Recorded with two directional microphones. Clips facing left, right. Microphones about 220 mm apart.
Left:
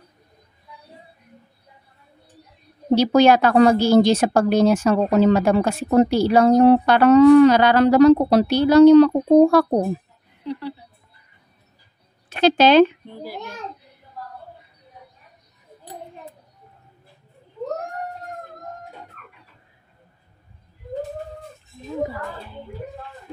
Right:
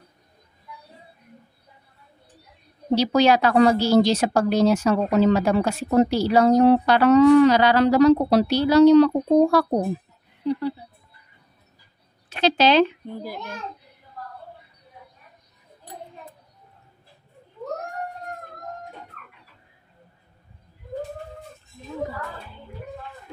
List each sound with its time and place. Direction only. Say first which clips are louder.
2.9 s a woman's voice: left 4 dB; 50° left (ahead or behind)
12.3 s speech: left 4 dB; 50° left (ahead or behind)